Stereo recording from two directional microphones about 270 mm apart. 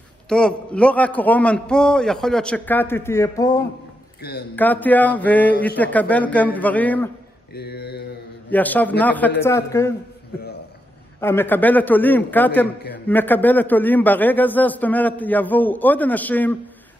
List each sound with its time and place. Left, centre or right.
0.3 s a man's voice: centre
4.2 s a man's voice: left
4.6 s a man's voice: centre
7.5 s mantra: left
8.5 s a man's voice: centre
11.1 s a man's voice: centre